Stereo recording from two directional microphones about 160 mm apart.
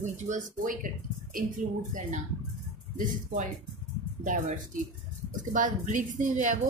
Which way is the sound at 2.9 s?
55° right (ahead or behind).